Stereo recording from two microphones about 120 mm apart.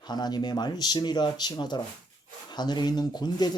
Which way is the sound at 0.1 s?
35° left (ahead or behind).